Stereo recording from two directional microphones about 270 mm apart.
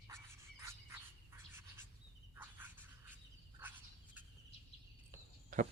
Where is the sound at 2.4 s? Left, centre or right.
Centre.